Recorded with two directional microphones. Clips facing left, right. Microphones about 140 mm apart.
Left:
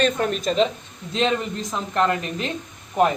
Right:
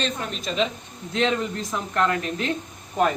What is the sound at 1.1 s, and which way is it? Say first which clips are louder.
Speech: left 1 dB; 20° left (ahead or behind).